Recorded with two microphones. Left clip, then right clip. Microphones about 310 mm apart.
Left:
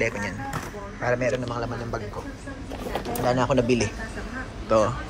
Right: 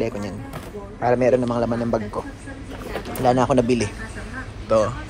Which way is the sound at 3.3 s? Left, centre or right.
Centre.